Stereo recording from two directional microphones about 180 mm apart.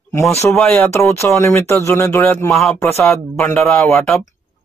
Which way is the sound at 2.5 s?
Centre (ahead or behind).